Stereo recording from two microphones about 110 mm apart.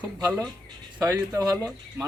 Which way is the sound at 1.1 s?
20° right (ahead or behind).